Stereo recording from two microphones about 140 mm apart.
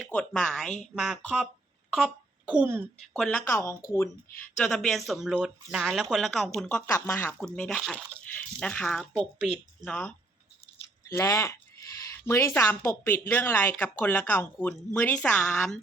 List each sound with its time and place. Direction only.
0.1 s speech: 5° left (ahead or behind)
1.9 s a sound: centre (ahead or behind)
3.1 s speech: 10° left (ahead or behind)
3.4 s speech: 20° left (ahead or behind)
4.5 s speech: 5° left (ahead or behind)
6.7 s speech: 15° left (ahead or behind)
7.4 s speech: 5° left (ahead or behind)
11.0 s speech: 20° left (ahead or behind)